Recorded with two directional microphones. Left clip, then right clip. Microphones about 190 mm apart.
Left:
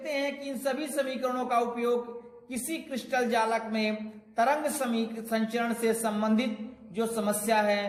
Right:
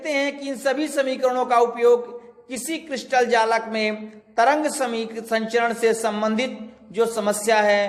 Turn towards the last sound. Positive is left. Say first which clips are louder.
# right 8 dB
turn(degrees=-25)  # may be behind; listen again after turning